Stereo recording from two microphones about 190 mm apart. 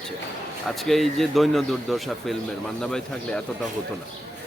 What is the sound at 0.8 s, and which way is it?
A man's voice, centre (ahead or behind).